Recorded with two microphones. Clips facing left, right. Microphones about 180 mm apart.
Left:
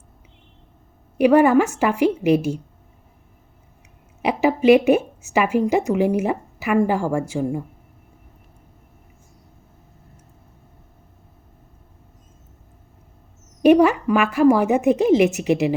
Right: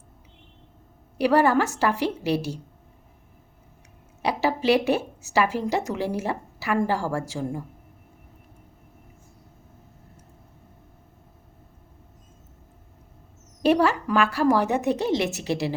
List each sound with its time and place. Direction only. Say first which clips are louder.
1.2 s a woman's voice: left 6 dB; 20° left (ahead or behind)
4.2 s a woman's voice: left 6 dB; 15° left (ahead or behind)
13.6 s a woman's voice: left 7 dB; 15° left (ahead or behind)